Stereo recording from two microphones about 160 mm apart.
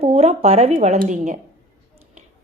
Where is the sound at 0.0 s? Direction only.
40° right (ahead or behind).